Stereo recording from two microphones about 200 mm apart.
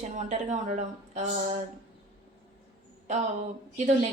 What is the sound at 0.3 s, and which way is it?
A woman's voice, 35° right (ahead or behind).